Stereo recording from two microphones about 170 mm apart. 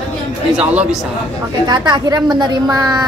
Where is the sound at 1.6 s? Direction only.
20° right (ahead or behind).